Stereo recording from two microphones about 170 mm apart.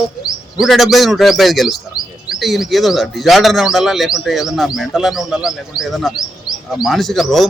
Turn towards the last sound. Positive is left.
turn(degrees=0)  # may be behind; listen again after turning